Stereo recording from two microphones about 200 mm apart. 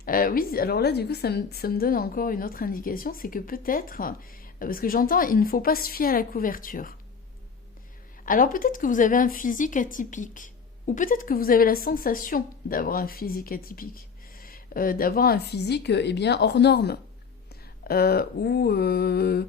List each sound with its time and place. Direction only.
0.0 s a woman's voice: 45° left (ahead or behind)
8.2 s a woman's voice: 45° left (ahead or behind)